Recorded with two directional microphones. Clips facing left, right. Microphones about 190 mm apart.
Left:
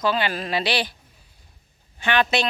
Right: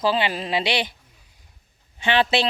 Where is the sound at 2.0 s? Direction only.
30° right (ahead or behind).